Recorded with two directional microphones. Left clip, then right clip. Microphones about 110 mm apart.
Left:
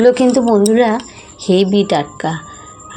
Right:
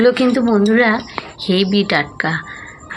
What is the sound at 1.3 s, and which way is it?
Speech, 40° right (ahead or behind).